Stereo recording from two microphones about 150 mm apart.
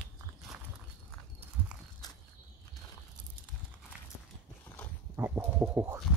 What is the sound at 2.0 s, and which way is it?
Walk, 25° left (ahead or behind).